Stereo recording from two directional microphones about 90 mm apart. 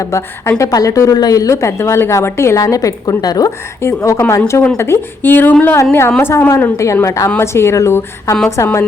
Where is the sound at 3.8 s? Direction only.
35° left (ahead or behind).